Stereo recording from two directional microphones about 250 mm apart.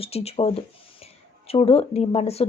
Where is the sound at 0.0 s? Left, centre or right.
Left.